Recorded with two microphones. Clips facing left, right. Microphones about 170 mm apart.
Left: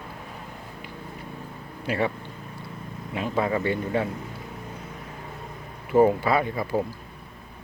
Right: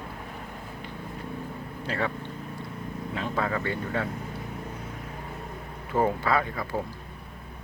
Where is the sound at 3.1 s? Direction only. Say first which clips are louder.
Left 4 dB; 15° left (ahead or behind).